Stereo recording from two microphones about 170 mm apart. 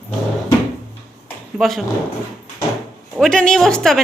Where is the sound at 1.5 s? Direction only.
Centre (ahead or behind).